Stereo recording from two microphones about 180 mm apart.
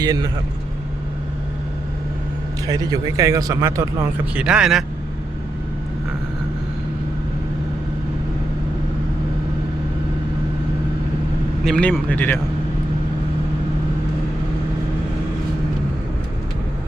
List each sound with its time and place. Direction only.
0.0 s speech: 20° right (ahead or behind)
2.6 s a man's voice: 20° right (ahead or behind); by 4.8 s 5° right (ahead or behind)
11.6 s speech: 5° left (ahead or behind)